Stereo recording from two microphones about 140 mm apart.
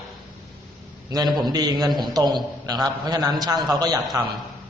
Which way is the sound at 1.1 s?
30° right (ahead or behind).